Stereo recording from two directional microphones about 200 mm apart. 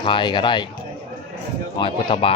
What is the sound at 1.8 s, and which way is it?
Speech, 25° left (ahead or behind).